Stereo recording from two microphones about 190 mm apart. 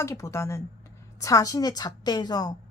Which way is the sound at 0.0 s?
15° left (ahead or behind).